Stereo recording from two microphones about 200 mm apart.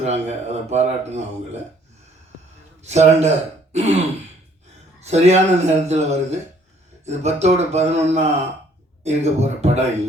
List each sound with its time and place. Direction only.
0.0 s speech: 35° right (ahead or behind)
2.8 s speech: 35° right (ahead or behind)